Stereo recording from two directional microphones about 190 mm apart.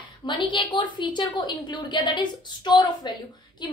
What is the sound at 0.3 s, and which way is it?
A woman's voice, 25° left (ahead or behind).